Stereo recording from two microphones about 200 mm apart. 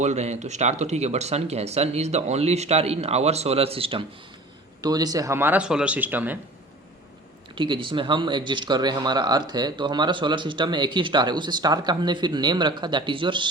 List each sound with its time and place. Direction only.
0.0 s speech: 35° right (ahead or behind); by 6.4 s 10° right (ahead or behind)
7.5 s speech: 25° right (ahead or behind)